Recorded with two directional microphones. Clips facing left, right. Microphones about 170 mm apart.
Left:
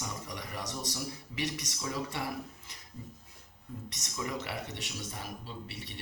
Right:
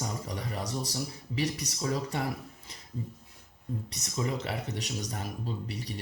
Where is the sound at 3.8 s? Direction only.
35° right (ahead or behind).